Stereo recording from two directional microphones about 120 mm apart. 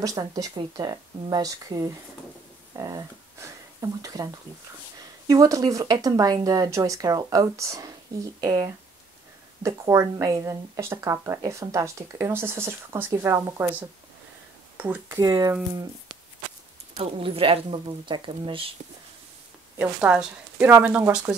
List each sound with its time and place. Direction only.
0.0 s speech: 30° right (ahead or behind)
5.3 s speech: 30° right (ahead or behind); by 15.1 s 15° right (ahead or behind)
15.1 s speech: 30° right (ahead or behind)
16.9 s speech: 50° right (ahead or behind)
19.8 s speech: 10° right (ahead or behind)